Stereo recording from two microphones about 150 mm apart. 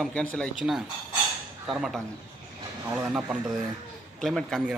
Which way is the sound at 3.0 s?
5° right (ahead or behind).